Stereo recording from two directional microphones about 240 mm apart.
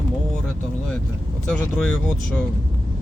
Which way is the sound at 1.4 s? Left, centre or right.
Centre.